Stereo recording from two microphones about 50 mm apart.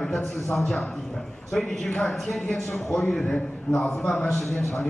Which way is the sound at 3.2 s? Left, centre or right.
Left.